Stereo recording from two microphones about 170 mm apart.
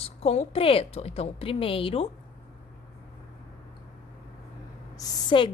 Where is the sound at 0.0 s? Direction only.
40° left (ahead or behind).